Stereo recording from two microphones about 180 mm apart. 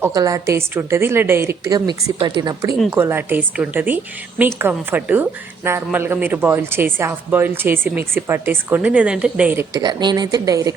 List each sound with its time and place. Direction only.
0.0 s speech: 20° right (ahead or behind)
9.8 s speech: 25° right (ahead or behind)